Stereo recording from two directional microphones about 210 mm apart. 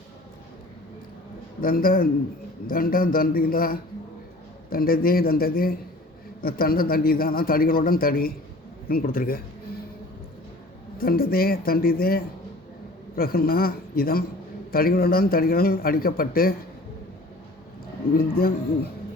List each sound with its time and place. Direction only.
1.6 s a man's voice: 45° left (ahead or behind)
10.9 s a man's voice: 45° left (ahead or behind)
18.2 s a man's voice: 45° left (ahead or behind)